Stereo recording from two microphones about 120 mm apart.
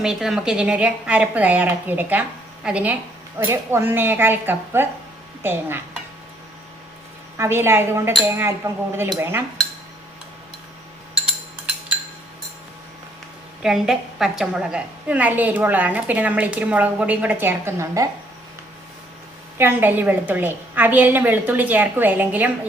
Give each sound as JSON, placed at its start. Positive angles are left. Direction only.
{"t": 0.0, "sound": "a woman's voice", "side_deg": -5}
{"t": 7.3, "sound": "speech", "side_deg": -20}
{"t": 13.6, "sound": "a woman's voice", "side_deg": -5}
{"t": 19.5, "sound": "a woman's voice", "side_deg": -15}